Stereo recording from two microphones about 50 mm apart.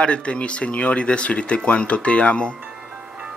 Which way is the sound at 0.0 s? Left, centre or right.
Left.